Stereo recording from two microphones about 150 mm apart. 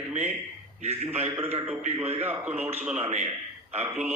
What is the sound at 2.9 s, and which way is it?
Speech, 45° right (ahead or behind).